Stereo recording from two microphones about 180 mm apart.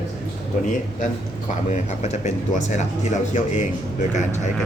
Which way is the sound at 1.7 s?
40° left (ahead or behind).